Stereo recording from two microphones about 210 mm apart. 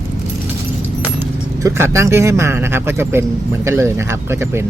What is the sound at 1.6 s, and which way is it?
Speech, 15° right (ahead or behind).